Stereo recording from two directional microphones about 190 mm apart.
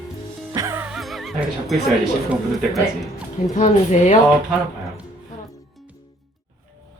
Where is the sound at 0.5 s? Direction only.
15° right (ahead or behind).